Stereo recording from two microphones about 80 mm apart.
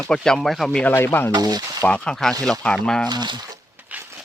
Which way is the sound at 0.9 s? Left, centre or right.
Left.